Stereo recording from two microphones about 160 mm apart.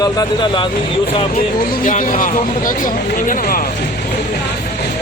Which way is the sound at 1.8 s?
55° left (ahead or behind).